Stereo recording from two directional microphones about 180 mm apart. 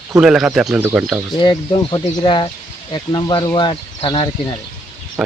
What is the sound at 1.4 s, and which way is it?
Speech, 25° left (ahead or behind).